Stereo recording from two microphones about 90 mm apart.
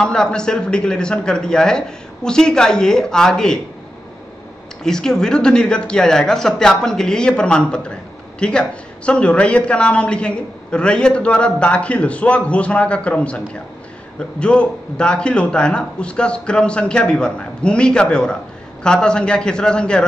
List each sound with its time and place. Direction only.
0.0 s speech: 10° left (ahead or behind)
4.8 s speech: 5° left (ahead or behind)
14.4 s speech: 10° left (ahead or behind)